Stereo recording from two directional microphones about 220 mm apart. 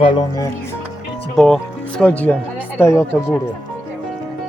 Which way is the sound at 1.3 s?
Centre (ahead or behind).